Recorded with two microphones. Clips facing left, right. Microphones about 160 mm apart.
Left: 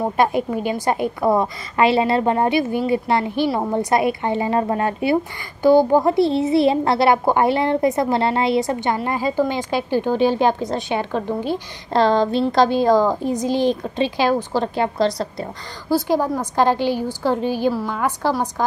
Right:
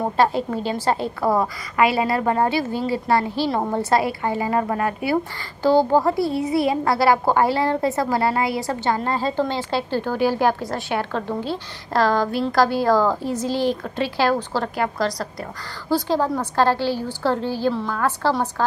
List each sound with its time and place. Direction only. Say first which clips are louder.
0.2 s a woman's voice: left 1 dB; 15° left (ahead or behind)
5.6 s a child's voice: left 3 dB; 15° left (ahead or behind)
15.9 s a woman's voice: left 2 dB; 10° left (ahead or behind)